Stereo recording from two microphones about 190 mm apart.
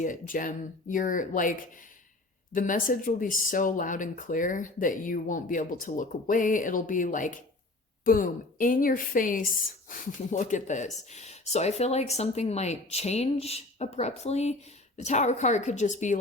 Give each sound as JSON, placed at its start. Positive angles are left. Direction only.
{"t": 0.0, "sound": "speech", "side_deg": 45}